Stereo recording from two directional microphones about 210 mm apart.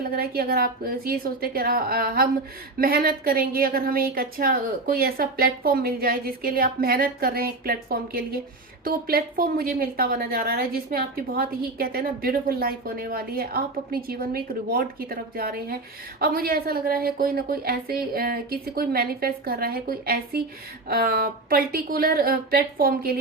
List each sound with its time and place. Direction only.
0.0 s a woman's voice: 45° right (ahead or behind)